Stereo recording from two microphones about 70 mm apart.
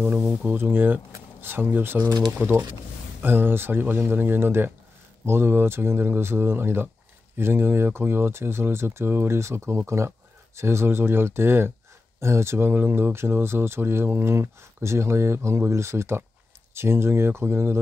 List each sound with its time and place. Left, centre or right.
0.0 s speech: right
2.0 s speech: right
3.2 s speech: right